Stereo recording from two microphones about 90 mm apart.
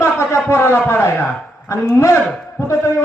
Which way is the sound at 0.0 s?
30° left (ahead or behind).